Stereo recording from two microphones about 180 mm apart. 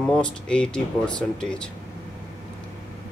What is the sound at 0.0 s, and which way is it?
Speech, 5° left (ahead or behind).